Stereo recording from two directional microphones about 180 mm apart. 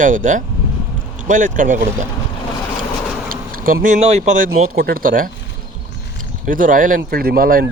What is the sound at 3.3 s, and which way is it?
Speech, 50° right (ahead or behind).